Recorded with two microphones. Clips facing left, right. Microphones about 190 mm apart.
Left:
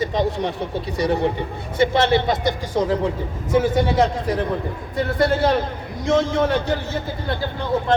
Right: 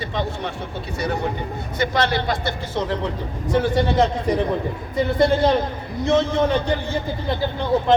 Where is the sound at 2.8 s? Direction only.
10° left (ahead or behind).